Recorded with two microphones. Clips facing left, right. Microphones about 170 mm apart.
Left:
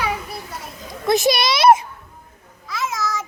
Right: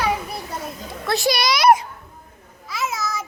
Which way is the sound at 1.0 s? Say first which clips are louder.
Left 3 dB; 20° left (ahead or behind).